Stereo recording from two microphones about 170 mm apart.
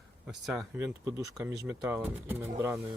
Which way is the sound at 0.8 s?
20° right (ahead or behind).